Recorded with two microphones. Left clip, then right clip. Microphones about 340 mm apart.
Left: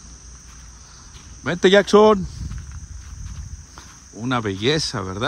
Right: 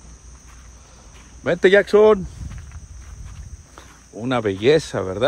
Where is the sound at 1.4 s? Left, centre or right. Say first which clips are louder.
Right 1 dB; centre.